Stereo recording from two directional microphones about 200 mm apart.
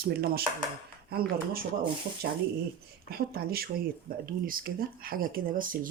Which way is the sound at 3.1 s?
50° right (ahead or behind).